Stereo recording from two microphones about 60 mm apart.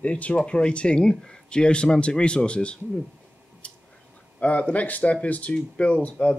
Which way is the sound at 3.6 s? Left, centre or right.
Left.